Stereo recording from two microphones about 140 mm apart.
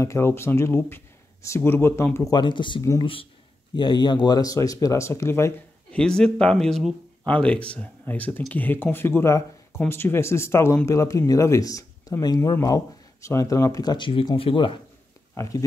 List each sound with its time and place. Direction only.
0.0 s speech: 20° left (ahead or behind)
2.3 s speech: 35° left (ahead or behind)
5.9 s speech: 5° left (ahead or behind); by 14.8 s 40° left (ahead or behind)
15.3 s speech: 20° left (ahead or behind)